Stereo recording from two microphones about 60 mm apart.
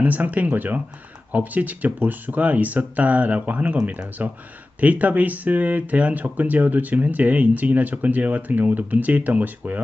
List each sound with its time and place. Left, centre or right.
0.0 s speech: right